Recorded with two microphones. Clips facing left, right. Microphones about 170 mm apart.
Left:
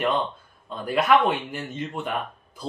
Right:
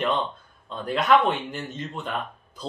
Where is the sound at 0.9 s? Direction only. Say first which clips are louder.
Even; 5° left (ahead or behind).